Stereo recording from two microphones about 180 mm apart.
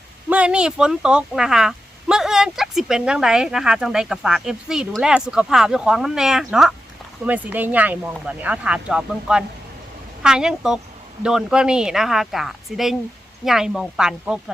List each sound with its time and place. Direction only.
0.3 s speech: 5° right (ahead or behind)